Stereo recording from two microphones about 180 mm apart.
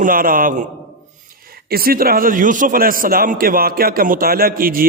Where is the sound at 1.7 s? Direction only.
55° right (ahead or behind).